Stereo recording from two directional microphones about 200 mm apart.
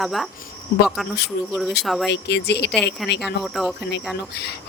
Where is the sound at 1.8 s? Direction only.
Centre (ahead or behind).